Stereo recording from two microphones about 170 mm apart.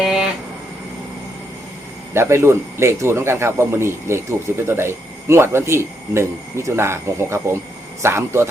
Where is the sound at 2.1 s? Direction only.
15° right (ahead or behind).